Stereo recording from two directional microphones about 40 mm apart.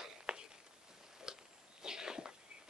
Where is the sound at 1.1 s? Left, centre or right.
Centre.